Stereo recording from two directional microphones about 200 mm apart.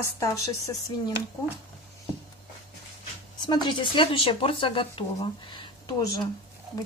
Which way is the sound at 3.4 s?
20° left (ahead or behind).